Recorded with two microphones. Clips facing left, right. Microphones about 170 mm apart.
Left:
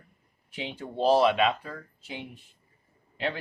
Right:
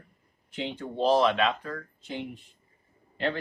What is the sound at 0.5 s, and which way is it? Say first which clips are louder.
Speech: right 2 dB; 10° left (ahead or behind).